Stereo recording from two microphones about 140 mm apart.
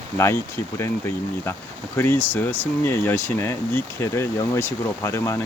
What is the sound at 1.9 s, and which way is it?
Speech, 15° left (ahead or behind).